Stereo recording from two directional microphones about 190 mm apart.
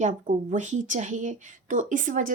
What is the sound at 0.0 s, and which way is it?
Speech, 40° right (ahead or behind).